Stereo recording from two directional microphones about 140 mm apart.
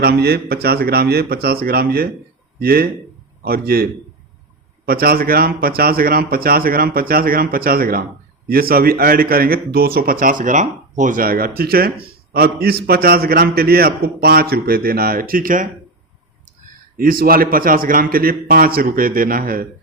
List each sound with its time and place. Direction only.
0.0 s a man's voice: 90° right
4.9 s a man's voice: 90° right
17.0 s a man's voice: 90° right